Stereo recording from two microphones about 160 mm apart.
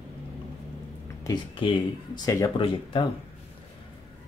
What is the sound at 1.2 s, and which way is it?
Speech, 30° left (ahead or behind).